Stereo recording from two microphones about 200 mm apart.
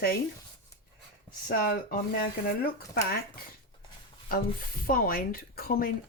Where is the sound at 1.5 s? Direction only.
50° left (ahead or behind).